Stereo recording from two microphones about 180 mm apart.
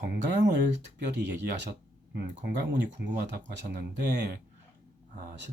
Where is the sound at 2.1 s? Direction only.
70° right (ahead or behind).